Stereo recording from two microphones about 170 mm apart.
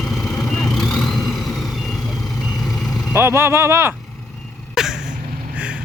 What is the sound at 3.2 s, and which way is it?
Speech, 15° right (ahead or behind).